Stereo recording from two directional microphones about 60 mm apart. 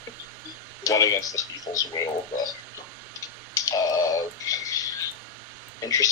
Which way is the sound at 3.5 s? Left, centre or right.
Left.